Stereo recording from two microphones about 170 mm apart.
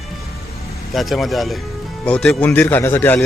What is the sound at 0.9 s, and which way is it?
A man's voice, centre (ahead or behind).